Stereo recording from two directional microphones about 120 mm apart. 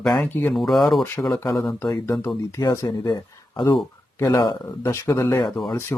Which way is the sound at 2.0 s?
25° left (ahead or behind).